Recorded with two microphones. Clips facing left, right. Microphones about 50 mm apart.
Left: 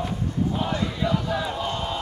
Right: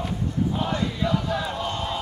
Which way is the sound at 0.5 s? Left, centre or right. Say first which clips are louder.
Even; centre.